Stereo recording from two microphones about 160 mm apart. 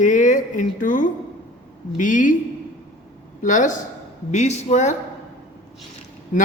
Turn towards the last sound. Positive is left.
turn(degrees=55)  # may be behind; listen again after turning